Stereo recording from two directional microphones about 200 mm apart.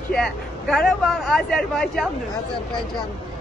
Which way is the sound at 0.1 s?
Centre (ahead or behind).